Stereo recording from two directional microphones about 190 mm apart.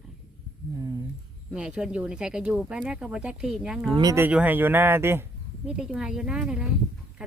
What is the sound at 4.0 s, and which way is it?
Speech, 15° right (ahead or behind).